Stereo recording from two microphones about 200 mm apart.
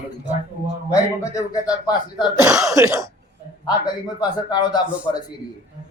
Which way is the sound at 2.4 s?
5° right (ahead or behind).